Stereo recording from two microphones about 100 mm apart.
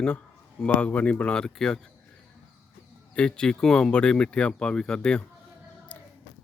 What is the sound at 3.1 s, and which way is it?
Speech, 10° left (ahead or behind).